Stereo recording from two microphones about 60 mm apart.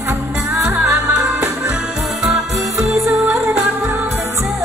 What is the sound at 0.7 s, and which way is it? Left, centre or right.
Music, right.